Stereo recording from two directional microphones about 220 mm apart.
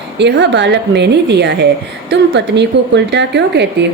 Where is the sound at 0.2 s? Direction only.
50° right (ahead or behind).